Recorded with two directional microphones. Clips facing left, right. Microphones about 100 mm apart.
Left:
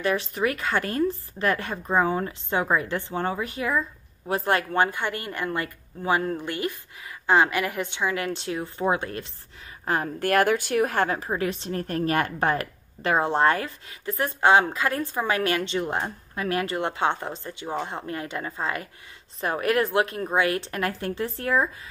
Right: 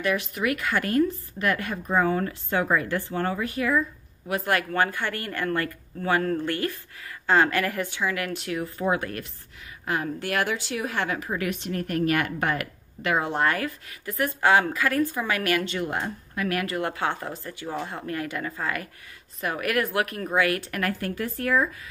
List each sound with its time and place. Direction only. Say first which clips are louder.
0.0 s a woman's voice: left 1 dB; 30° left (ahead or behind)
9.8 s a woman's voice: left 3 dB; 35° left (ahead or behind)